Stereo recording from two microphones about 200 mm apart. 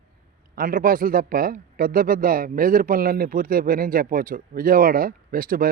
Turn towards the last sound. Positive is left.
turn(degrees=-45)  # may be behind; listen again after turning